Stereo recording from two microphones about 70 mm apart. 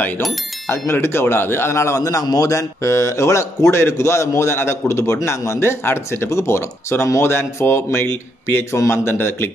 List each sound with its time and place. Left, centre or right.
0.7 s speech: left